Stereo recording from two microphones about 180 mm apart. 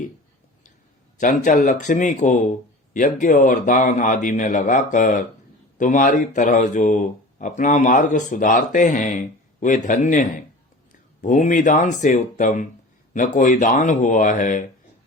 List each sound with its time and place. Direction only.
1.2 s speech: 45° left (ahead or behind)